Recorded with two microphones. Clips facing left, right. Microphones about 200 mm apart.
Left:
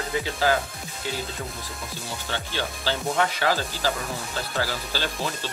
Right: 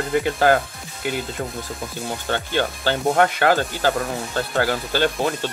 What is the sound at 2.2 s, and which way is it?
Speech, 55° right (ahead or behind).